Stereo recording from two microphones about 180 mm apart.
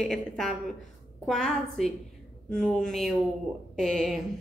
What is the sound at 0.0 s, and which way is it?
Speech, centre (ahead or behind).